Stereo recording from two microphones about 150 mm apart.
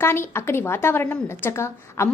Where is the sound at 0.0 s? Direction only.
15° left (ahead or behind).